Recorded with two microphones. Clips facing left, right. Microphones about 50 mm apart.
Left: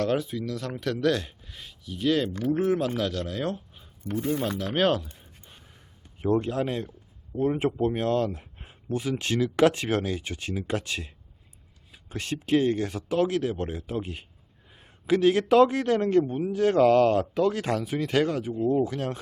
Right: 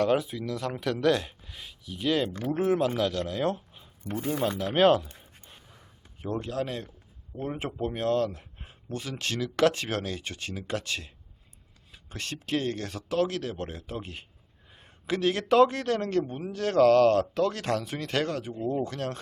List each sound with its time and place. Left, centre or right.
0.0 s a man's voice: centre
6.4 s a man's voice: left; by 19.2 s centre